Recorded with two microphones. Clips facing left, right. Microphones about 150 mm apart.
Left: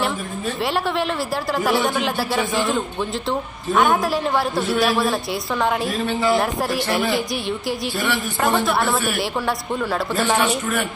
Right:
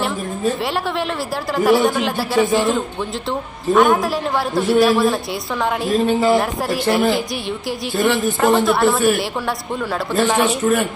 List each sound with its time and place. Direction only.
1.6 s a man's voice: centre (ahead or behind)
5.9 s speech: 40° right (ahead or behind)
6.3 s a man's voice: centre (ahead or behind)
8.4 s a man's voice: centre (ahead or behind)
10.1 s a man's voice: centre (ahead or behind)